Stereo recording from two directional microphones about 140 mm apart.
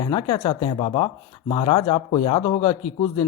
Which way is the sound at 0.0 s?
35° left (ahead or behind).